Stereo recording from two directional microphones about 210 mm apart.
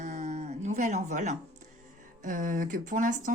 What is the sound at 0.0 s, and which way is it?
Speech, 35° right (ahead or behind).